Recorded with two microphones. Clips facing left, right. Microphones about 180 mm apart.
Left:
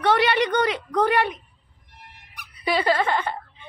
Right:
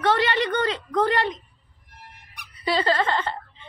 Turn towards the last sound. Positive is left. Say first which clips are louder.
# even
turn(degrees=15)  # may be behind; listen again after turning